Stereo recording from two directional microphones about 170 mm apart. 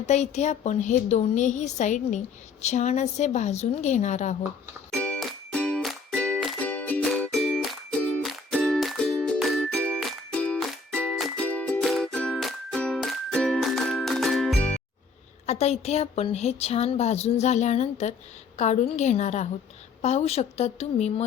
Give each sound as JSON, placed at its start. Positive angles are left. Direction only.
{"t": 0.1, "sound": "a woman's voice", "side_deg": 40}
{"t": 4.9, "sound": "music", "side_deg": 5}
{"t": 15.4, "sound": "a woman's voice", "side_deg": 40}